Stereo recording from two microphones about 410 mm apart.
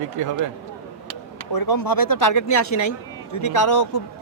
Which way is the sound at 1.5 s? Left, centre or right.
Left.